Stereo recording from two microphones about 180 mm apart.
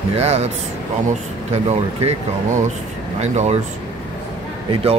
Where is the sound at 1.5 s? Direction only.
40° right (ahead or behind).